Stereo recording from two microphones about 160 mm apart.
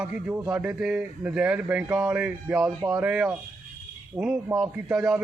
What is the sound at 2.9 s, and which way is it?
A man's voice, 5° right (ahead or behind).